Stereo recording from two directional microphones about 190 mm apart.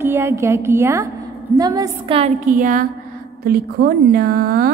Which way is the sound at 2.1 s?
35° right (ahead or behind).